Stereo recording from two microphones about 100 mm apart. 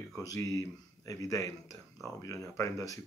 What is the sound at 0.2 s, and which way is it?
Speech, 35° left (ahead or behind).